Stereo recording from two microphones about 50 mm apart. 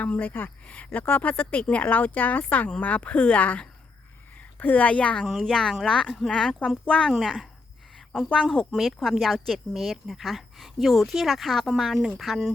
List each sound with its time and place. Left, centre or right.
0.0 s speech: left
5.2 s speech: centre
5.5 s speech: centre
7.2 s speech: centre
8.7 s speech: centre